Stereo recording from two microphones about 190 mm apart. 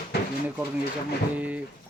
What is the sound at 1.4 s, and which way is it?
Speech, 5° right (ahead or behind).